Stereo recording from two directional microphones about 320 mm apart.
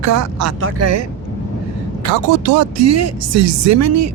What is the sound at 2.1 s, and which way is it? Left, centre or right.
Speech, right.